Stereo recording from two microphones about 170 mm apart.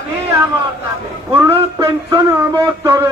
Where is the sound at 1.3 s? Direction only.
15° right (ahead or behind).